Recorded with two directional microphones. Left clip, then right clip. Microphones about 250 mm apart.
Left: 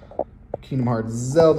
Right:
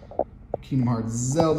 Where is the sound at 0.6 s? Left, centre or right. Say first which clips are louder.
Left 2 dB; left.